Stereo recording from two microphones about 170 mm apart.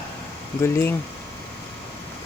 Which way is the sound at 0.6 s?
10° left (ahead or behind).